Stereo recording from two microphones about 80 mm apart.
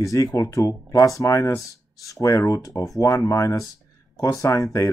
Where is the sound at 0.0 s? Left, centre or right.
Left.